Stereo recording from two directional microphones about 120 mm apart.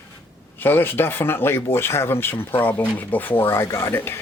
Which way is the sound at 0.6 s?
15° left (ahead or behind).